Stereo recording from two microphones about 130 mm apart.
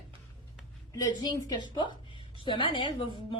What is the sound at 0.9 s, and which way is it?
A woman's voice, 30° left (ahead or behind).